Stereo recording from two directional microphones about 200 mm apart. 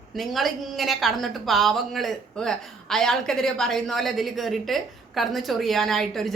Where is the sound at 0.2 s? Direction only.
Centre (ahead or behind).